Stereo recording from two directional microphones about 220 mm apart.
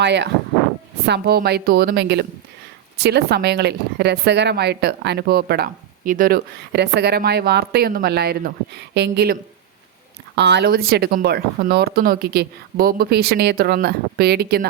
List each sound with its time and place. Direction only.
0.0 s a woman's voice: 50° right (ahead or behind)